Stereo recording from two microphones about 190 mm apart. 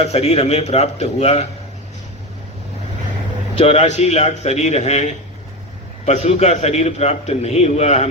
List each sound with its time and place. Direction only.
0.0 s a man's voice: 35° left (ahead or behind)
3.5 s a man's voice: 35° left (ahead or behind)